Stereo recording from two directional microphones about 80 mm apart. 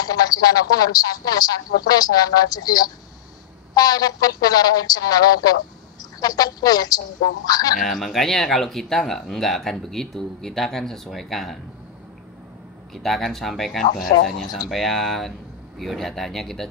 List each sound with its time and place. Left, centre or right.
0.0 s speech: left
7.8 s speech: centre
12.9 s speech: centre